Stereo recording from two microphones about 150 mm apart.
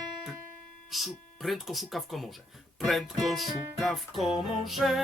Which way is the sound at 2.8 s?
Centre (ahead or behind).